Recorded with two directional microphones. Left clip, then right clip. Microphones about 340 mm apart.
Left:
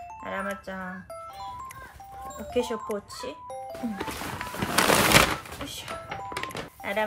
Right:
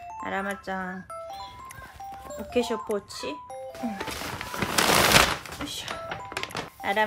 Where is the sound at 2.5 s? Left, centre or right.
Right.